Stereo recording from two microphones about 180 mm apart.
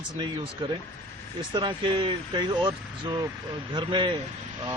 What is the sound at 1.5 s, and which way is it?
Speech, 25° right (ahead or behind).